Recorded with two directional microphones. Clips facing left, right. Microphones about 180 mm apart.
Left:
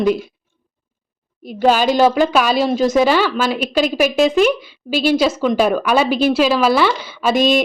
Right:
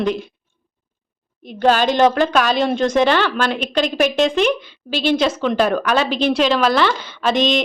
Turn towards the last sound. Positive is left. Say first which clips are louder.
# left 3 dB
turn(degrees=5)  # may be behind; listen again after turning